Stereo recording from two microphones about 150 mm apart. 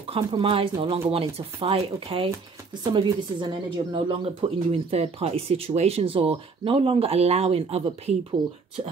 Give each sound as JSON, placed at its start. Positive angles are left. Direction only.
{"t": 0.1, "sound": "speech", "side_deg": -35}